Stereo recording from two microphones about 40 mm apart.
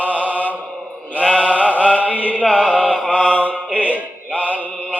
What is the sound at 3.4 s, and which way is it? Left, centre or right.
Music, right.